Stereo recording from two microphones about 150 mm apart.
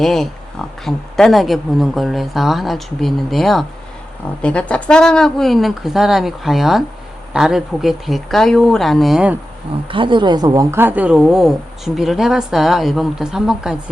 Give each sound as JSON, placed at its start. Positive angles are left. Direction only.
{"t": 0.0, "sound": "speech", "side_deg": 0}
{"t": 9.9, "sound": "a woman's voice", "side_deg": -35}